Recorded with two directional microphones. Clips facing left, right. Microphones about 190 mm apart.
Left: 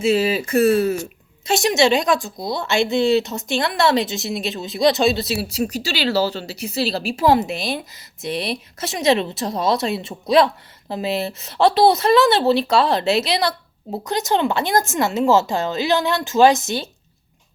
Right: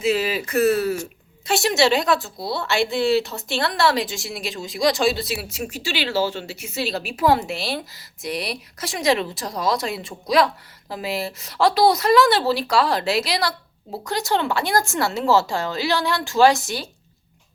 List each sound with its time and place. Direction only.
0.0 s a woman's voice: 30° left (ahead or behind)